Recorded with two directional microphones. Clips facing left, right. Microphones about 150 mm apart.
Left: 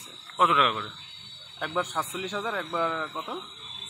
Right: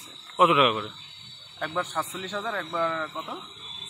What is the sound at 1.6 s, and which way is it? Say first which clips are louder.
Speech: even; 10° left (ahead or behind).